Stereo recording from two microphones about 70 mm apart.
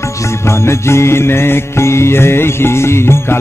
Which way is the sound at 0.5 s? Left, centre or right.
Left.